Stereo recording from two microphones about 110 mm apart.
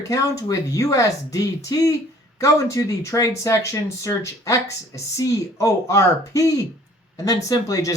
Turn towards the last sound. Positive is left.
turn(degrees=30)  # may be behind; listen again after turning